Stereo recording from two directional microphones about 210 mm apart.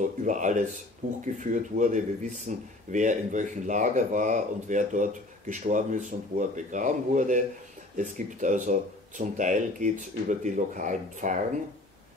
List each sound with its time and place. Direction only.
0.0 s speech: 40° right (ahead or behind)